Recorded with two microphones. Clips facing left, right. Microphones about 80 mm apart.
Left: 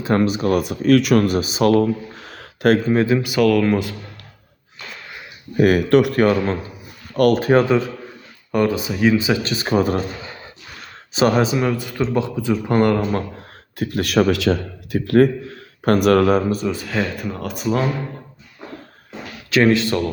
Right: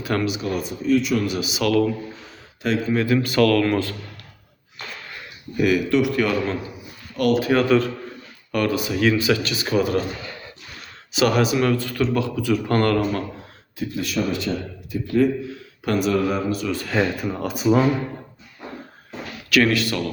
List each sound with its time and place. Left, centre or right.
0.0 s speech: left
0.4 s speech: left
1.2 s speech: left
2.2 s a sound: left
3.2 s speech: centre
5.5 s speech: left
7.5 s speech: left
9.5 s speech: left
11.1 s speech: left
11.5 s speech: centre
13.7 s speech: left
16.8 s speech: centre
19.5 s speech: left